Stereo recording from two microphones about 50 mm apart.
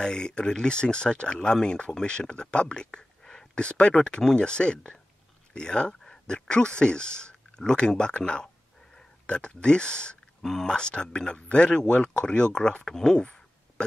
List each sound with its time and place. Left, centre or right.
0.0 s speech: centre
10.4 s speech: centre